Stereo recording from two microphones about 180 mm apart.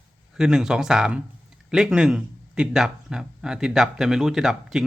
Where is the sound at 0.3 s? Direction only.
5° right (ahead or behind).